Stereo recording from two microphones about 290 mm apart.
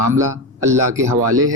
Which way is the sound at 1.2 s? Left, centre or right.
Right.